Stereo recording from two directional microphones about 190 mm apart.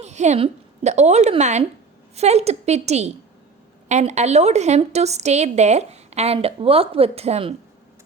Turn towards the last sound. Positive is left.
turn(degrees=-35)  # may be behind; listen again after turning